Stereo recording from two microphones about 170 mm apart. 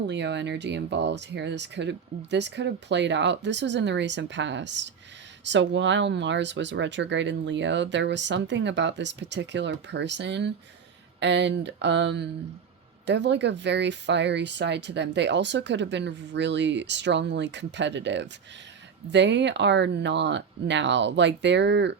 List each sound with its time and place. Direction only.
0.1 s speech: 90° right